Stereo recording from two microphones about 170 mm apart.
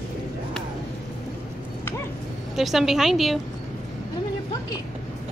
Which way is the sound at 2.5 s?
Centre (ahead or behind).